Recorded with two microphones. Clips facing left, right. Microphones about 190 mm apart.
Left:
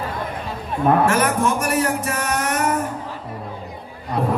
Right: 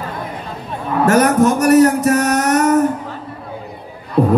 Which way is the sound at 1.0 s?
40° right (ahead or behind).